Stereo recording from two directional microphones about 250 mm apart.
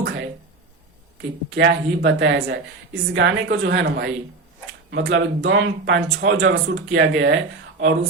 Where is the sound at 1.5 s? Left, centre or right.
Right.